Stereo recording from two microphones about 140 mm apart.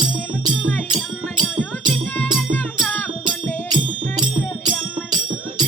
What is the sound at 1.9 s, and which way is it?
Music, 10° left (ahead or behind).